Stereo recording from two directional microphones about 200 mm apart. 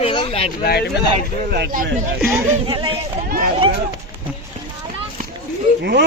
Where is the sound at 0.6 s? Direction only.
50° left (ahead or behind).